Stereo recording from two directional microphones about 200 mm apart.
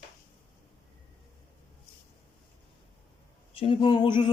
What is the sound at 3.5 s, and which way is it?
Speech, 25° left (ahead or behind).